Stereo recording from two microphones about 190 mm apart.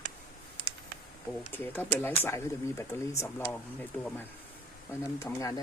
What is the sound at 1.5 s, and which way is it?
Speech, 10° left (ahead or behind).